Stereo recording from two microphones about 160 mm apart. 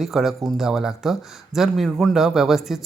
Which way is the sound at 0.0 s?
Centre (ahead or behind).